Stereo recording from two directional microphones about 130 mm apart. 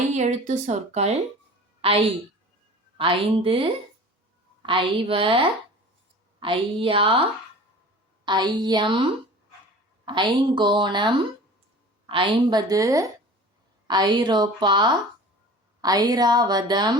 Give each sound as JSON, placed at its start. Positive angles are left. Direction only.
{"t": 0.1, "sound": "a woman's voice", "side_deg": -65}
{"t": 1.8, "sound": "a woman's voice", "side_deg": -45}
{"t": 3.0, "sound": "a woman's voice", "side_deg": -45}
{"t": 8.2, "sound": "a woman's voice", "side_deg": -35}
{"t": 10.1, "sound": "a woman's voice", "side_deg": -35}